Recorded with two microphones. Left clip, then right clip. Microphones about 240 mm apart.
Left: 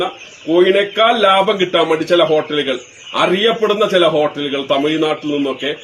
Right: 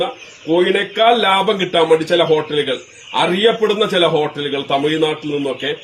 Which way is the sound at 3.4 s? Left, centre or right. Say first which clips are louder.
Even; centre.